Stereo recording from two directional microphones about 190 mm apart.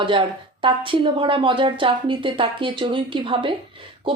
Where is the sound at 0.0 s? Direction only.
25° right (ahead or behind).